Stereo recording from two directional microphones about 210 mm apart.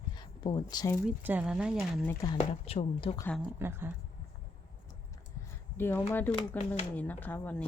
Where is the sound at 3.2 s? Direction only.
5° left (ahead or behind).